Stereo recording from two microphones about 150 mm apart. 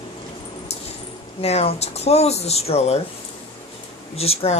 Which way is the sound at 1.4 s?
45° left (ahead or behind).